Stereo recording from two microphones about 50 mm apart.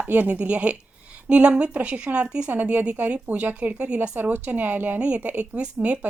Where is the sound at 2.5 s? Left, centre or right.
Right.